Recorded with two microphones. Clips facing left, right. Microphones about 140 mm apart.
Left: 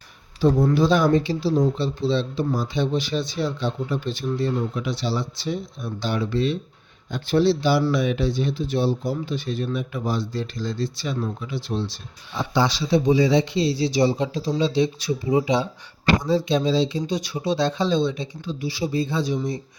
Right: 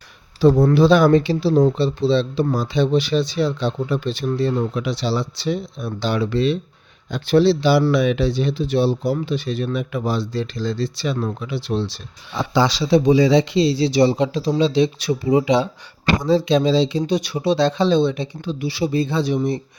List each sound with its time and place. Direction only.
0.4 s speech: 75° right (ahead or behind)